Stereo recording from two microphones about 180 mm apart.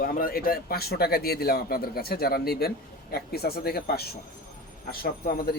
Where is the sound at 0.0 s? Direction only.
55° left (ahead or behind).